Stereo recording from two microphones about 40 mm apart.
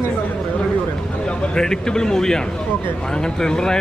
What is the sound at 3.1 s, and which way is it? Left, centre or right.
Speech, centre.